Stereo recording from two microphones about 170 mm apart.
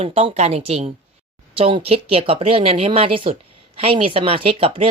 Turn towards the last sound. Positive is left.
turn(degrees=-35)  # may be behind; listen again after turning